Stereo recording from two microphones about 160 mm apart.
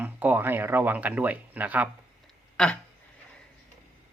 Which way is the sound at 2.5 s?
5° left (ahead or behind).